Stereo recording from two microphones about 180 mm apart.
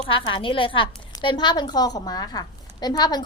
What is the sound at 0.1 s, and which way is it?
A woman's voice, 30° left (ahead or behind).